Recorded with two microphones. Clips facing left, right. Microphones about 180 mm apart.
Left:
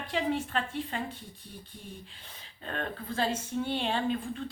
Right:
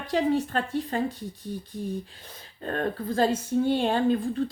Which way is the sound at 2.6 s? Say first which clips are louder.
Right 8 dB; 40° right (ahead or behind).